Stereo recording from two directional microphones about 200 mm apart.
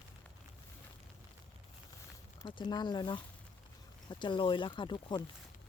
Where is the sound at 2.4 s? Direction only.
25° left (ahead or behind).